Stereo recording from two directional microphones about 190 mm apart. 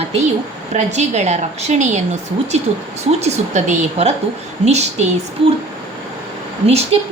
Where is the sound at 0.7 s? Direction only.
35° right (ahead or behind).